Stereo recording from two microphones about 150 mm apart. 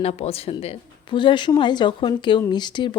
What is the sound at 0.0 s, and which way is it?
A woman's voice, 40° left (ahead or behind).